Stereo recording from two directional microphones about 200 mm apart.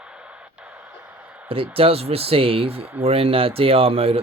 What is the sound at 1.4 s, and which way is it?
Speech, 25° right (ahead or behind).